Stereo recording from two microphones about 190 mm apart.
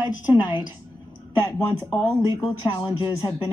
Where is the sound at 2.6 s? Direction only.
25° left (ahead or behind).